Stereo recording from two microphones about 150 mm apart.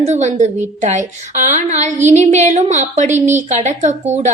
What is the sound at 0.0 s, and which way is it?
A woman's voice, 50° right (ahead or behind).